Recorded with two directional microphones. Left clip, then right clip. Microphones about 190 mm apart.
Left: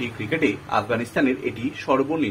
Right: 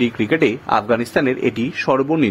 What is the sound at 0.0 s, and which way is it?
Speech, 50° right (ahead or behind).